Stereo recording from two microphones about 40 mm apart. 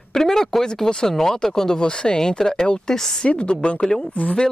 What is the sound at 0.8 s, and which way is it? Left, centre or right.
Speech, centre.